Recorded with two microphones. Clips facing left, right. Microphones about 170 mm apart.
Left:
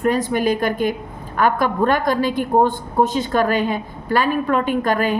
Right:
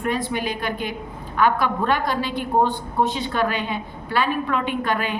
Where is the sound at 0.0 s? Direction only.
40° left (ahead or behind).